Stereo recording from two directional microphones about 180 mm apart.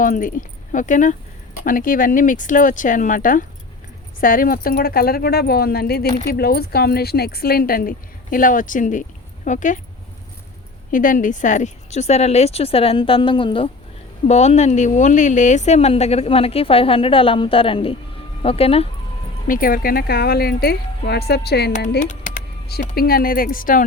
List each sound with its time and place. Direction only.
0.0 s speech: 50° left (ahead or behind)
10.9 s speech: 50° left (ahead or behind); by 18.9 s 35° left (ahead or behind)
19.5 s speech: 50° left (ahead or behind)
21.8 s speech: 45° left (ahead or behind)